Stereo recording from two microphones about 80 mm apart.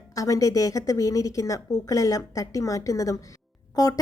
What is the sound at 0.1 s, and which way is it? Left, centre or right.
Speech, left.